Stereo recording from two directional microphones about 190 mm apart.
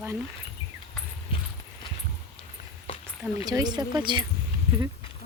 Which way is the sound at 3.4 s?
20° right (ahead or behind).